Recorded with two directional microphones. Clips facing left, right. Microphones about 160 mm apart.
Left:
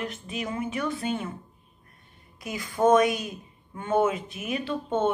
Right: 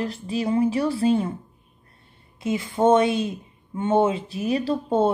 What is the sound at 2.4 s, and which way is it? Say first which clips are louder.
A woman's voice: right 3 dB; 25° right (ahead or behind).